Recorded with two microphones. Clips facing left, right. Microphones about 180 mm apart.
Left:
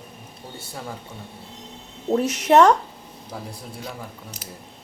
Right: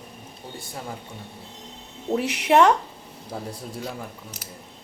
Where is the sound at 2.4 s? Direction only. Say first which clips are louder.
Left 2 dB; 45° left (ahead or behind).